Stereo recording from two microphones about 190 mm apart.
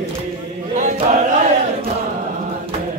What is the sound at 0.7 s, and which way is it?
Chant, 40° right (ahead or behind).